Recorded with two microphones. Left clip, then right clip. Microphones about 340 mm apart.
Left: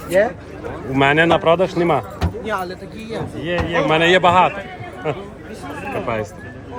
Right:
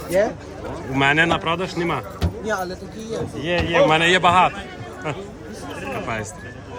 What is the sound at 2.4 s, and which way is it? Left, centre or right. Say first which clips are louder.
Speech: left 1 dB; left.